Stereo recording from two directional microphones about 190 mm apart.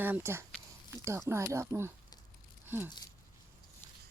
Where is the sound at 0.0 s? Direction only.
10° right (ahead or behind).